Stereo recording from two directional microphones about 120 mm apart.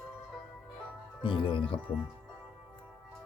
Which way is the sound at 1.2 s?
45° left (ahead or behind).